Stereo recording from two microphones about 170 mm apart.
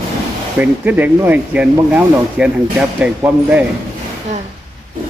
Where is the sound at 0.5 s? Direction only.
10° right (ahead or behind).